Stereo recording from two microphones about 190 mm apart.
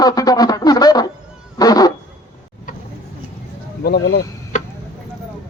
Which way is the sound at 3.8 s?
55° left (ahead or behind).